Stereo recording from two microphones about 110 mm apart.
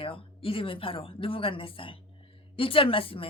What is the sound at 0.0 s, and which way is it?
Speech, 55° left (ahead or behind).